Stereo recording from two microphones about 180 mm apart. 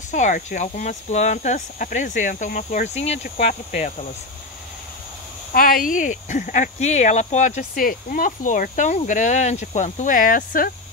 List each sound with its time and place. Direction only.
0.1 s speech: 45° left (ahead or behind)
5.5 s speech: 55° left (ahead or behind)